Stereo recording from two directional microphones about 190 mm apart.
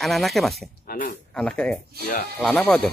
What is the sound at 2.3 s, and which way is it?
Speech, 5° left (ahead or behind).